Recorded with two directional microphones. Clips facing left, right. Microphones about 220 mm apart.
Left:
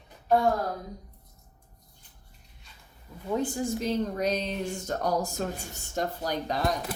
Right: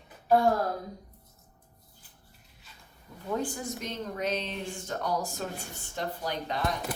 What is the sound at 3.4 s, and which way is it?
A woman's voice, 25° left (ahead or behind).